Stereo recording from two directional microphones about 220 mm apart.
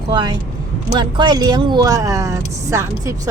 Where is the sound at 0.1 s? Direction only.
20° right (ahead or behind).